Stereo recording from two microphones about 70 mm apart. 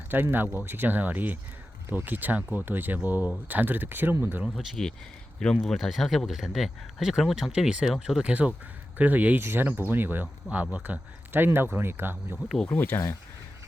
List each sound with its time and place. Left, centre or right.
0.1 s speech: right
4.4 s speech: centre
8.3 s speech: centre
12.6 s speech: left